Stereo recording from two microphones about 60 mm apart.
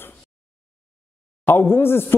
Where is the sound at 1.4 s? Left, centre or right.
Left.